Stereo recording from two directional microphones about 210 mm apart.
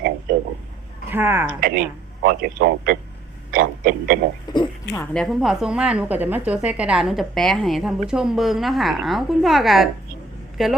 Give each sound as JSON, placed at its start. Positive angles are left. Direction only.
{"t": 0.3, "sound": "a sound", "side_deg": -45}
{"t": 1.1, "sound": "speech", "side_deg": -10}
{"t": 1.5, "sound": "a man's voice", "side_deg": -40}
{"t": 3.5, "sound": "a sound", "side_deg": -40}
{"t": 4.5, "sound": "speech", "side_deg": 20}
{"t": 5.1, "sound": "a woman's voice", "side_deg": 0}